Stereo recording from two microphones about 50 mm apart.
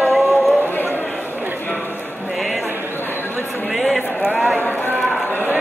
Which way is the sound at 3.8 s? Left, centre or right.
Left.